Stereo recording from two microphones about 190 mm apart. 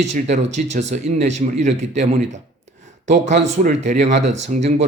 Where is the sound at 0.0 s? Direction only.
35° right (ahead or behind).